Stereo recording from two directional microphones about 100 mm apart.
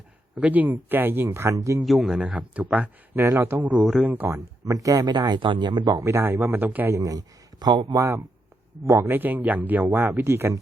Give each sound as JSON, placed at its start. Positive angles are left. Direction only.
{"t": 0.3, "sound": "speech", "side_deg": -15}
{"t": 1.8, "sound": "speech", "side_deg": 0}
{"t": 2.1, "sound": "speech", "side_deg": -10}
{"t": 3.2, "sound": "speech", "side_deg": -30}
{"t": 3.5, "sound": "speech", "side_deg": -15}
{"t": 4.6, "sound": "speech", "side_deg": -35}
{"t": 6.0, "sound": "speech", "side_deg": -30}
{"t": 6.9, "sound": "speech", "side_deg": -35}
{"t": 7.9, "sound": "speech", "side_deg": -30}